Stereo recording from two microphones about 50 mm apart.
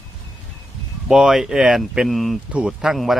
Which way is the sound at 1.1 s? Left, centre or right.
Centre.